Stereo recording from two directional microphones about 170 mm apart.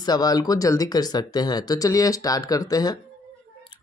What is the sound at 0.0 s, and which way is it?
Speech, 25° left (ahead or behind).